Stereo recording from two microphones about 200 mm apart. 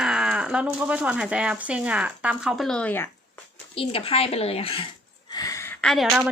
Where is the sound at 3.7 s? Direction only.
30° left (ahead or behind).